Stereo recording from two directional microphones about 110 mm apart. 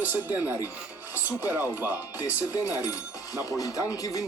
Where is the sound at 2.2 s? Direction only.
30° left (ahead or behind).